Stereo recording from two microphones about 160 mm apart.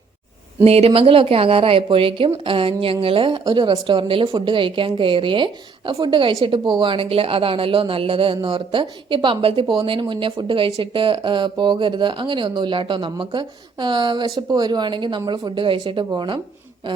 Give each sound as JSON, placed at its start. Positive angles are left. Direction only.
{"t": 0.6, "sound": "a woman's voice", "side_deg": -40}